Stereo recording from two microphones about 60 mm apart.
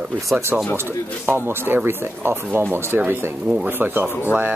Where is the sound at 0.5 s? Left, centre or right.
Centre.